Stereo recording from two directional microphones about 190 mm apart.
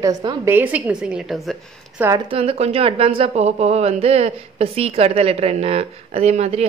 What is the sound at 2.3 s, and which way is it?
A woman's voice, 30° right (ahead or behind).